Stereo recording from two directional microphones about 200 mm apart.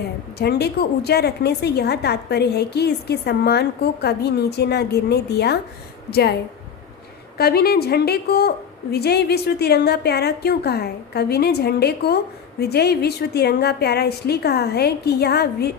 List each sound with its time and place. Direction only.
0.3 s a woman's voice: 55° left (ahead or behind)
7.3 s a woman's voice: 50° left (ahead or behind)